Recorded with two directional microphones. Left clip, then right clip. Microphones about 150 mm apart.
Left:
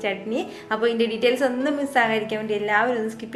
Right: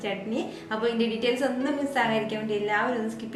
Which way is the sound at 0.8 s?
15° left (ahead or behind).